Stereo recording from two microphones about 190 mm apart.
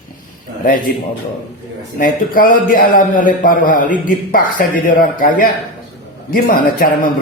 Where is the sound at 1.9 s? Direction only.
50° left (ahead or behind).